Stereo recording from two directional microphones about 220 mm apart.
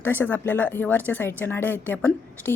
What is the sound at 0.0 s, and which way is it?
A woman's voice, 10° left (ahead or behind).